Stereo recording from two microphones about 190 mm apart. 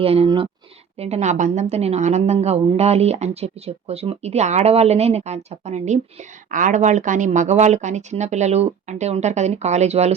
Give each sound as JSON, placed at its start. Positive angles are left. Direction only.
{"t": 0.0, "sound": "a woman's voice", "side_deg": -30}